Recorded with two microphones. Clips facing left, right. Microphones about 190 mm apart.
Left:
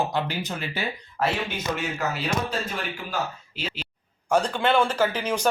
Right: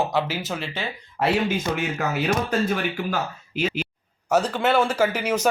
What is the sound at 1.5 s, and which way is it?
Speech, 55° right (ahead or behind).